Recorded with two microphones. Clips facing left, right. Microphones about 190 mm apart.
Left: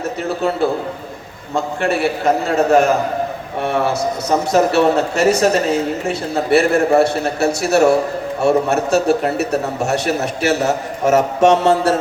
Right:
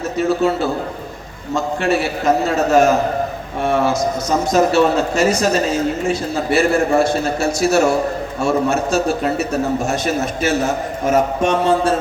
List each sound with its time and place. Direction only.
1.5 s a man's voice: 55° left (ahead or behind)